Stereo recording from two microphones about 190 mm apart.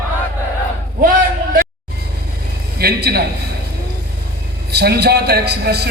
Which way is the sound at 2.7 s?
55° right (ahead or behind).